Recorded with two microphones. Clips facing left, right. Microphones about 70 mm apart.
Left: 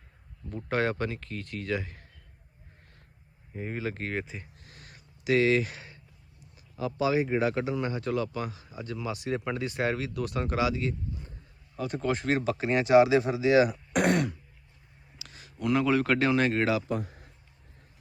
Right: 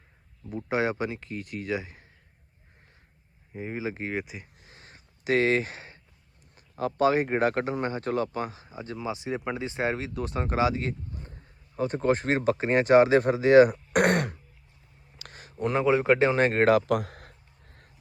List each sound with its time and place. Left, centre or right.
0.4 s speech: centre
3.5 s speech: centre
4.7 s a sound: right
5.2 s speech: right
6.7 s speech: right
16.9 s speech: right